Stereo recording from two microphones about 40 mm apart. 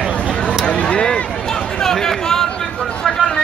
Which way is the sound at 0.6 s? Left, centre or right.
Left.